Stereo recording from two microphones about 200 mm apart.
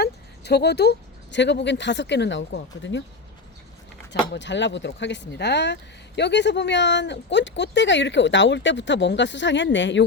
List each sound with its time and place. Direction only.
0.0 s speech: 55° left (ahead or behind)
4.1 s speech: 65° left (ahead or behind)